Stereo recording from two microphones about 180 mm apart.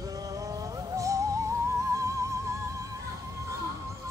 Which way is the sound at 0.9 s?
20° right (ahead or behind).